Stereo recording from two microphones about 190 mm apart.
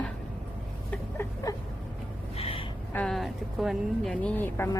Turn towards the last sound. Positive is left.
turn(degrees=10)  # may be behind; listen again after turning